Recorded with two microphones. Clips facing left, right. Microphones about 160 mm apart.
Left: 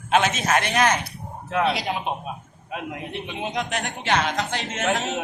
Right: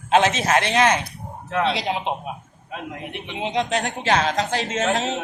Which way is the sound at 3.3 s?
25° right (ahead or behind).